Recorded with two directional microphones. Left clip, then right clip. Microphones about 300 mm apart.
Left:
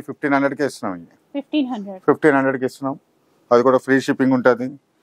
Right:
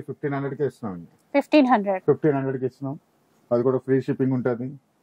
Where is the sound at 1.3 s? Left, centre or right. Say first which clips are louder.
Right 6 dB; centre.